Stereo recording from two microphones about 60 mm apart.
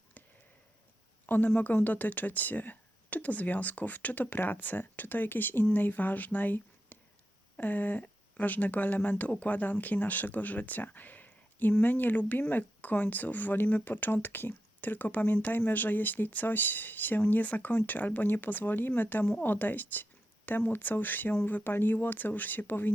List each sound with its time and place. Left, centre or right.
1.3 s speech: left